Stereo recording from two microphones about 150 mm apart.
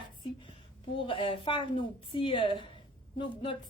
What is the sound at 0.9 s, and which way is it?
A woman's voice, 35° left (ahead or behind).